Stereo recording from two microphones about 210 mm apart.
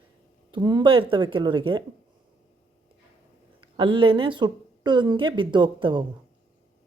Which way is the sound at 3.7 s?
25° right (ahead or behind).